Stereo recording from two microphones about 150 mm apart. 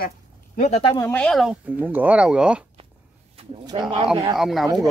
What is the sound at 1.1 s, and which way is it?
Speech, 5° left (ahead or behind).